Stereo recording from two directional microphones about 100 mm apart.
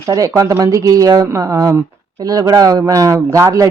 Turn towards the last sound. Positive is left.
turn(degrees=-30)  # may be behind; listen again after turning